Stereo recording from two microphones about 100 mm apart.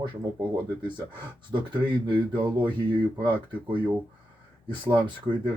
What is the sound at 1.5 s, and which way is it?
Speech, 50° right (ahead or behind).